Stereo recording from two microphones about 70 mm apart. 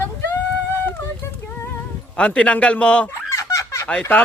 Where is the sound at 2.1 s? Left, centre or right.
Centre.